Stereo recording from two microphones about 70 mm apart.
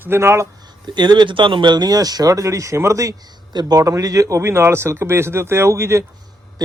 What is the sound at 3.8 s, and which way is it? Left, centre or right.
Speech, right.